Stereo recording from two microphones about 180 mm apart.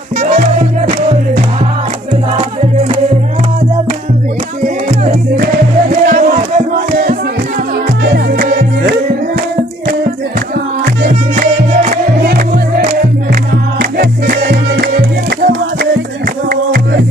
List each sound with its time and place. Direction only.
6.0 s music: 50° right (ahead or behind)
8.0 s music: 60° right (ahead or behind)
11.1 s music: 55° right (ahead or behind)